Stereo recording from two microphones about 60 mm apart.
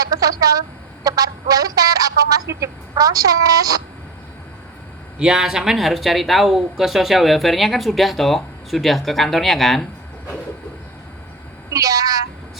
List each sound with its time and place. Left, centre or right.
0.0 s a sound: right
1.0 s a woman's voice: right
5.2 s speech: centre
11.7 s a woman's voice: right